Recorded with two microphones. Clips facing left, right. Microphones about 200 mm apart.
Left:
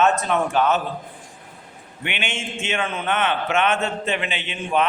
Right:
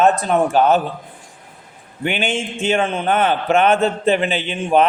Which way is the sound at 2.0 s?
35° right (ahead or behind).